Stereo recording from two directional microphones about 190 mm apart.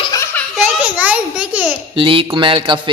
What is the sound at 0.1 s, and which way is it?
Baby laughter, 10° left (ahead or behind).